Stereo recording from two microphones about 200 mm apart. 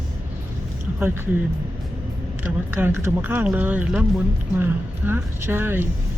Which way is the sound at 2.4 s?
10° right (ahead or behind).